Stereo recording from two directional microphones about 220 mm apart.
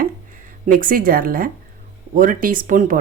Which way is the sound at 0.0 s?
35° right (ahead or behind).